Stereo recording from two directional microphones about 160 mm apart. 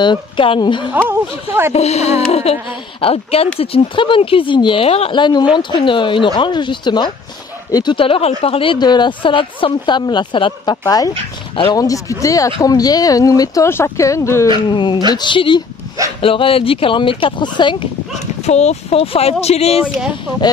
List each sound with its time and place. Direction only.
0.0 s speech: 30° left (ahead or behind)
1.0 s speech: 15° right (ahead or behind)
1.7 s speech: 40° left (ahead or behind); by 11.1 s 25° left (ahead or behind)
11.5 s speech: 35° left (ahead or behind)
11.8 s speech: 20° left (ahead or behind)
14.7 s speech: 30° left (ahead or behind)
18.4 s speech: 45° left (ahead or behind)